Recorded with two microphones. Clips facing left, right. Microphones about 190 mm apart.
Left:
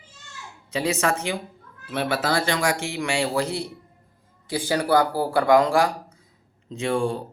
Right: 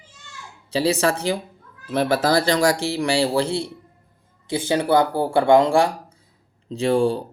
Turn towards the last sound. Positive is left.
turn(degrees=-35)  # may be behind; listen again after turning